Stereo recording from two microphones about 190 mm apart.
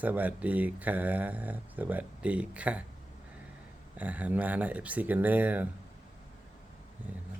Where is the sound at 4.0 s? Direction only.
10° right (ahead or behind).